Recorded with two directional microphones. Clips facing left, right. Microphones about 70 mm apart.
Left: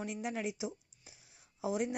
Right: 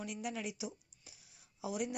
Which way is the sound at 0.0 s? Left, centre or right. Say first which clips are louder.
Left 3 dB; left.